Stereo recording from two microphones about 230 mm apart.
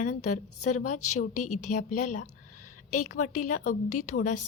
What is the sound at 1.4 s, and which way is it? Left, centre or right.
Speech, left.